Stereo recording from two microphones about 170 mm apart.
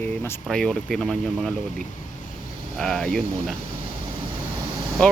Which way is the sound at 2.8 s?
5° left (ahead or behind).